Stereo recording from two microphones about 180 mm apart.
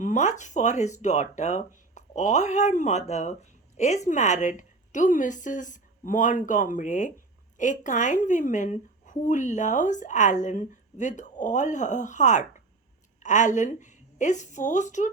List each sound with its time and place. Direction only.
0.0 s a woman's voice: 40° left (ahead or behind)